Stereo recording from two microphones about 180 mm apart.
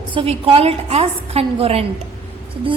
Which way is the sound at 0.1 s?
30° right (ahead or behind).